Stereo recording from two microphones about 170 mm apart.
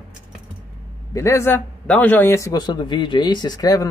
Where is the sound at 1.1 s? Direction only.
15° left (ahead or behind).